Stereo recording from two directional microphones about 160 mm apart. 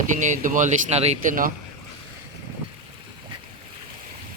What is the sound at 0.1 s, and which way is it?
Speech, 50° right (ahead or behind).